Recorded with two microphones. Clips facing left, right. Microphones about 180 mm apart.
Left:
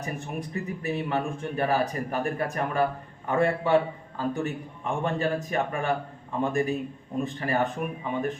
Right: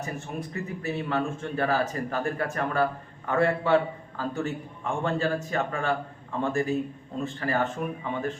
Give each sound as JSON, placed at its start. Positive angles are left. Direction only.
{"t": 0.0, "sound": "a man's voice", "side_deg": 15}